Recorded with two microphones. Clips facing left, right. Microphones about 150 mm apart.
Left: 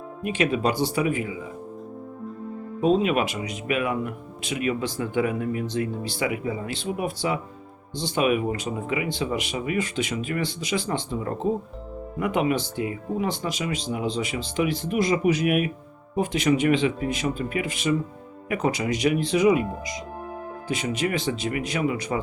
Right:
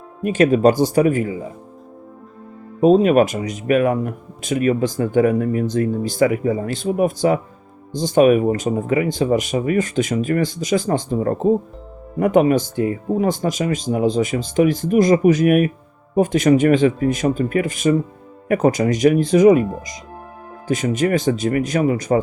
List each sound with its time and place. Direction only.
0.2 s speech: 45° right (ahead or behind)
2.8 s speech: 45° right (ahead or behind)